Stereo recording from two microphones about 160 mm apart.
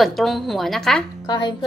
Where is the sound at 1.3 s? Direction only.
25° left (ahead or behind).